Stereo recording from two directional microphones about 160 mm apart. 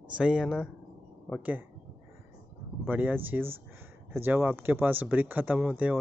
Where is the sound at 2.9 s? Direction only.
10° right (ahead or behind).